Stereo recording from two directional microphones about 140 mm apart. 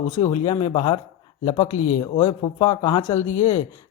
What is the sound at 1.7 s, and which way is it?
Speech, 60° left (ahead or behind).